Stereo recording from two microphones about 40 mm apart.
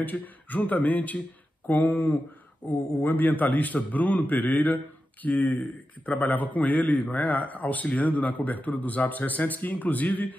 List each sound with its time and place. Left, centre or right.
0.0 s a man's voice: left
2.6 s a man's voice: left
3.0 s a man's voice: left